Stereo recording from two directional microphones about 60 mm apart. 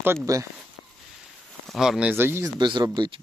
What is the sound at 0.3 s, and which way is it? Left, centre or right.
Speech, right.